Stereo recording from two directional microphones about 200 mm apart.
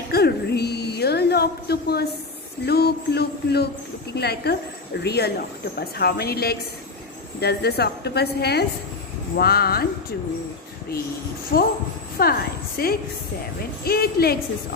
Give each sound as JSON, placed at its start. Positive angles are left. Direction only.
{"t": 0.1, "sound": "a sound", "side_deg": 55}
{"t": 2.6, "sound": "speech", "side_deg": 55}
{"t": 11.5, "sound": "speech", "side_deg": 50}